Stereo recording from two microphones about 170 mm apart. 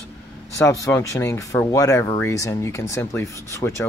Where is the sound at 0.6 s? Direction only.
15° left (ahead or behind).